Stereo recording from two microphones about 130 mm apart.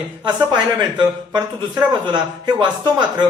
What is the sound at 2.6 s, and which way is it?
Speech, 35° right (ahead or behind).